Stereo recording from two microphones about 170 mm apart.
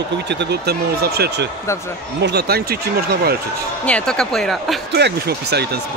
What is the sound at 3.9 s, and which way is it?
Speech, 5° left (ahead or behind).